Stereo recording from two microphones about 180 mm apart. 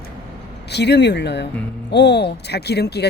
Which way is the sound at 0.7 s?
70° left (ahead or behind).